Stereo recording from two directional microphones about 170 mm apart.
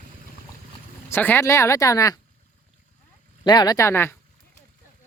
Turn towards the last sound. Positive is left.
turn(degrees=15)  # may be behind; listen again after turning